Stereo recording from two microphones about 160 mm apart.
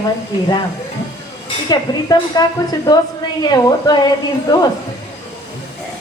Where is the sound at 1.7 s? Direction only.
25° left (ahead or behind).